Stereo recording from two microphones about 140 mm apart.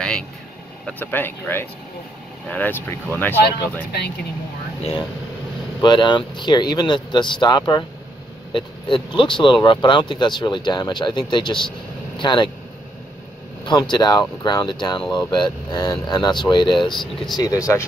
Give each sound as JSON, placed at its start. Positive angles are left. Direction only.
{"t": 0.8, "sound": "speech", "side_deg": 15}
{"t": 5.8, "sound": "speech", "side_deg": 35}
{"t": 13.7, "sound": "speech", "side_deg": 30}
{"t": 16.8, "sound": "speech", "side_deg": 0}
{"t": 17.4, "sound": "speech", "side_deg": 25}